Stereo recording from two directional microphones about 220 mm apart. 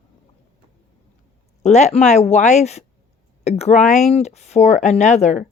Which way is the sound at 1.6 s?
30° left (ahead or behind).